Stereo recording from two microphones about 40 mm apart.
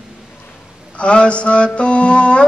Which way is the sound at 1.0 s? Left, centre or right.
Left.